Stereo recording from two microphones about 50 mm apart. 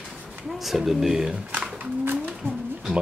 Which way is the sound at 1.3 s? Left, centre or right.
Right.